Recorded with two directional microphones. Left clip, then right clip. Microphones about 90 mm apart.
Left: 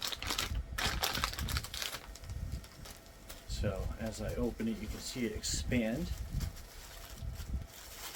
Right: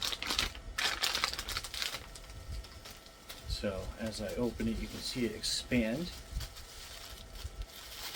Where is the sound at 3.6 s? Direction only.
25° left (ahead or behind).